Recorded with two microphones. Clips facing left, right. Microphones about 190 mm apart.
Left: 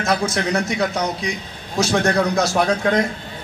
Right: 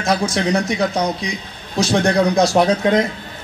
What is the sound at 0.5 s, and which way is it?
A man's voice, 15° right (ahead or behind).